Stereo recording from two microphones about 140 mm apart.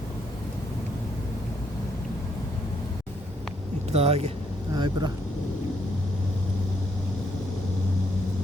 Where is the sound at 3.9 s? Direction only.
45° right (ahead or behind).